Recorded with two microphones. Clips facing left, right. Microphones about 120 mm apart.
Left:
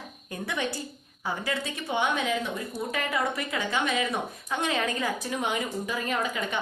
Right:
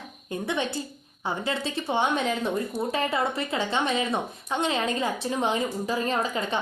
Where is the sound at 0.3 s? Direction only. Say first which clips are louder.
Right 3 dB; 25° right (ahead or behind).